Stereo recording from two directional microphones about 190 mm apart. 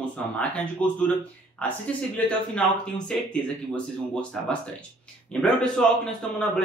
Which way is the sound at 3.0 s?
5° left (ahead or behind).